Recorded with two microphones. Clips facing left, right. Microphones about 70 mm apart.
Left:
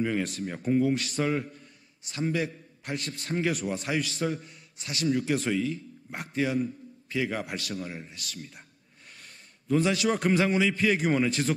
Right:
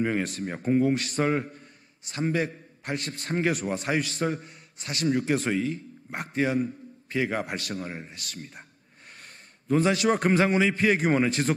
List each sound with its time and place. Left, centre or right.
0.0 s a man's voice: right